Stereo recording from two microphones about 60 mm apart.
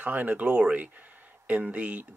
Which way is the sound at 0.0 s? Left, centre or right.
Right.